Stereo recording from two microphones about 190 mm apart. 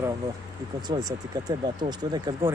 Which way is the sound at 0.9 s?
20° right (ahead or behind).